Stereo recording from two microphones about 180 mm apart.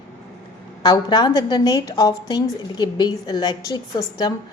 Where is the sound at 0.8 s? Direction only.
25° left (ahead or behind).